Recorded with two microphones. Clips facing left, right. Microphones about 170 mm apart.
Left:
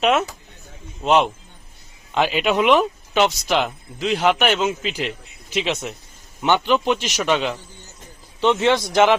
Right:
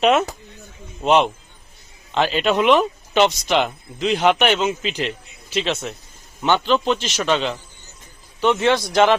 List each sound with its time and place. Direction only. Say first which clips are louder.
0.0 s a man's voice: right 2 dB; 5° left (ahead or behind)
8.4 s a man's voice: even; 20° left (ahead or behind)